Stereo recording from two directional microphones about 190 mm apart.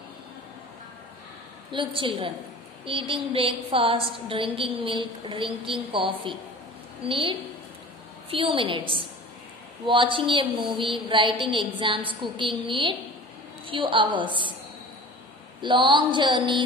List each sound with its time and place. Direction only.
1.7 s a woman's voice: 25° right (ahead or behind)
7.1 s a woman's voice: 25° right (ahead or behind)
15.6 s a woman's voice: 25° right (ahead or behind)